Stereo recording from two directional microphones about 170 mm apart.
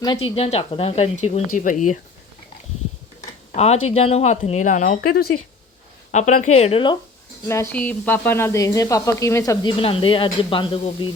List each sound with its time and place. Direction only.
0.0 s speech: 30° left (ahead or behind); by 2.0 s 50° left (ahead or behind)
3.5 s speech: 40° left (ahead or behind)
4.9 s speech: 65° left (ahead or behind)
6.1 s speech: 45° left (ahead or behind)
7.4 s speech: 15° left (ahead or behind)
9.5 s speech: 30° left (ahead or behind)